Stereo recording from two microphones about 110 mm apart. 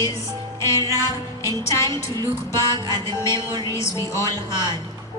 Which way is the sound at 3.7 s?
25° left (ahead or behind).